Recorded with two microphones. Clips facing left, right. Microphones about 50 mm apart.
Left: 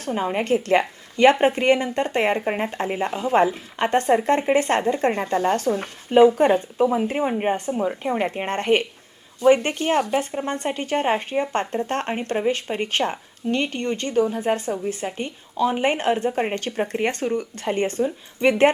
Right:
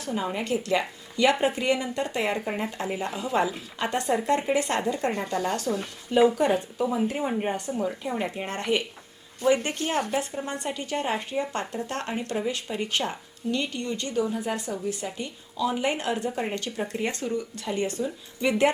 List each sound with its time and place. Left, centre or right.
0.0 s speech: left